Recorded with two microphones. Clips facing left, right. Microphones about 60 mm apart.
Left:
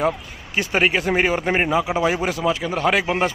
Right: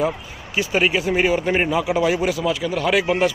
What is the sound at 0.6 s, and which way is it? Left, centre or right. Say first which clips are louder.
Speech: even; left.